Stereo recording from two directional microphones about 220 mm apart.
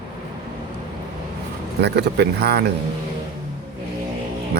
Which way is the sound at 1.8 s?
50° right (ahead or behind).